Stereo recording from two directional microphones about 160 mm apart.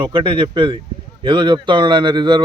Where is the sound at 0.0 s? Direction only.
30° right (ahead or behind).